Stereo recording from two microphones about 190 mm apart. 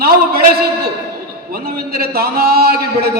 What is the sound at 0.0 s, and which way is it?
A man's voice, 55° right (ahead or behind).